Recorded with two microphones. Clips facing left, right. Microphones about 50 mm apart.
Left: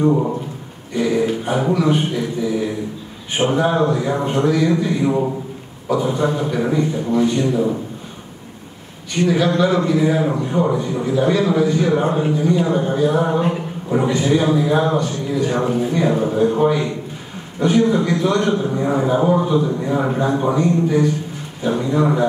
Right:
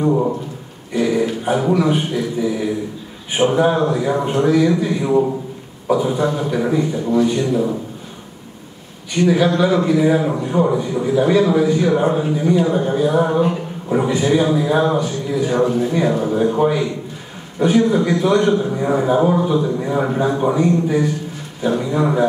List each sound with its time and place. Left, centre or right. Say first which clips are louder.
0.0 s a man's voice: even; centre
0.9 s a sound: even; centre
1.7 s a man's voice: left 1 dB; centre
9.6 s a man's voice: right 1 dB; centre
15.6 s a man's voice: right 2 dB; centre
16.3 s a man's voice: even; centre